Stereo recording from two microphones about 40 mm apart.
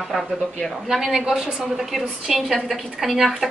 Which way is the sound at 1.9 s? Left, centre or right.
Centre.